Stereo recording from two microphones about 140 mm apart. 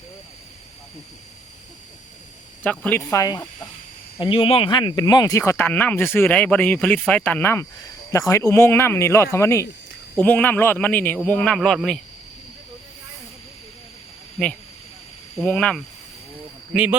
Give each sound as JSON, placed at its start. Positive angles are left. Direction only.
{"t": 2.6, "sound": "speech", "side_deg": 10}
{"t": 3.0, "sound": "speech", "side_deg": 25}
{"t": 4.2, "sound": "speech", "side_deg": 40}
{"t": 5.5, "sound": "speech", "side_deg": 10}
{"t": 10.2, "sound": "speech", "side_deg": 10}
{"t": 15.4, "sound": "speech", "side_deg": 5}
{"t": 16.7, "sound": "a man's voice", "side_deg": -10}